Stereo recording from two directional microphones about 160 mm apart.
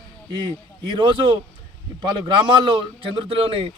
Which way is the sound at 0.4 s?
30° right (ahead or behind).